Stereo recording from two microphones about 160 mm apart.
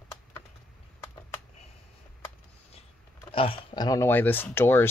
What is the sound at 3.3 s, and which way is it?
Speech, 35° left (ahead or behind).